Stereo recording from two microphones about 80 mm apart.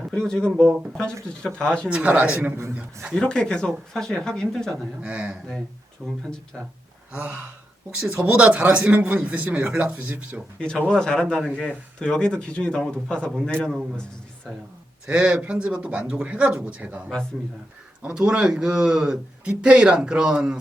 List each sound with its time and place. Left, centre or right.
0.1 s speech: centre
1.9 s speech: centre
3.2 s speech: centre
5.0 s speech: centre
10.6 s speech: centre
15.0 s speech: centre
18.0 s speech: centre